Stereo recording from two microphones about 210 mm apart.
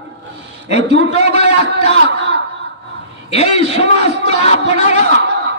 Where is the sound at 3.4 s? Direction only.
30° left (ahead or behind).